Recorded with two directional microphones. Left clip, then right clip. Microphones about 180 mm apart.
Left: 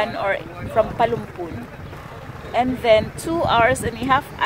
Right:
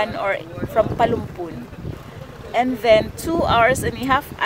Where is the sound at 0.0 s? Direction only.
15° right (ahead or behind).